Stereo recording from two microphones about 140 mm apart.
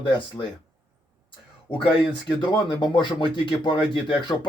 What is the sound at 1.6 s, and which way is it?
Speech, 40° left (ahead or behind).